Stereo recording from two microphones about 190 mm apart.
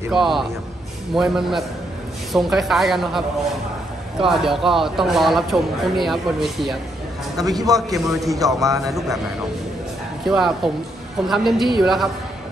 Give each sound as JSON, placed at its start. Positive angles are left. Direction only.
{"t": 0.1, "sound": "speech", "side_deg": 0}
{"t": 7.3, "sound": "a man's voice", "side_deg": -20}
{"t": 7.9, "sound": "speech", "side_deg": 0}
{"t": 8.3, "sound": "speech", "side_deg": -20}
{"t": 10.2, "sound": "speech", "side_deg": 0}